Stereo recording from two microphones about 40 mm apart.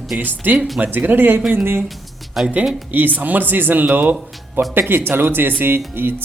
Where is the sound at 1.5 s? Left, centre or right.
Right.